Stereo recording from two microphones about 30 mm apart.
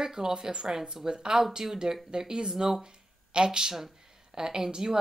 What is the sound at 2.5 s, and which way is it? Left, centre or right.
Speech, centre.